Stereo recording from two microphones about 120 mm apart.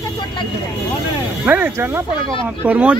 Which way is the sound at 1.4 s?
15° right (ahead or behind).